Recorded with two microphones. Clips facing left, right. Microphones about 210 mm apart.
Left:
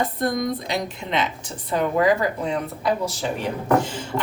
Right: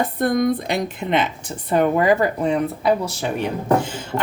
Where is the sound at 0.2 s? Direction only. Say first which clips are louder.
Right 5 dB; 60° right (ahead or behind).